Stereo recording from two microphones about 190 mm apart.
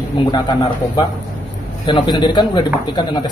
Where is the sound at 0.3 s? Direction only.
25° left (ahead or behind).